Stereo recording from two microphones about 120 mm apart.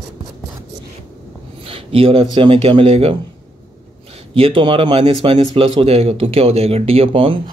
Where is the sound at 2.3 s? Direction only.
45° right (ahead or behind).